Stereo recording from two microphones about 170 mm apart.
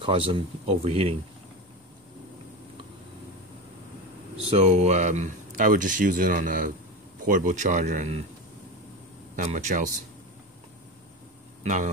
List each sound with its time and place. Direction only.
0.0 s speech: 30° right (ahead or behind)
4.5 s speech: 40° right (ahead or behind)
9.4 s speech: 45° right (ahead or behind)
11.6 s speech: 45° right (ahead or behind)